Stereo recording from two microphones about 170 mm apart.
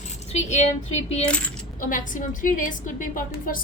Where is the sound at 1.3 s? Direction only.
5° left (ahead or behind).